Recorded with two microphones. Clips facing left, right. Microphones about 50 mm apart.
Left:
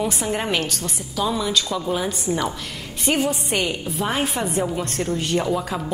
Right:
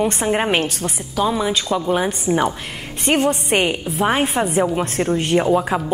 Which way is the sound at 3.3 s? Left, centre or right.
Right.